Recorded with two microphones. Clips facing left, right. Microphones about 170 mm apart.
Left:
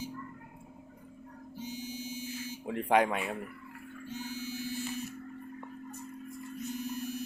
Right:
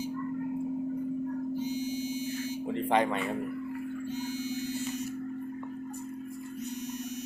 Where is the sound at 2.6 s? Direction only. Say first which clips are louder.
Left 1 dB; 5° left (ahead or behind).